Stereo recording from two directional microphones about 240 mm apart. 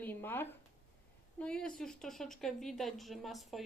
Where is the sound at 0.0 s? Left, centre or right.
Centre.